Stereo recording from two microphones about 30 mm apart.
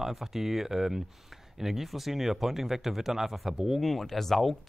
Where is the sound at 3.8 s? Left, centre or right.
Centre.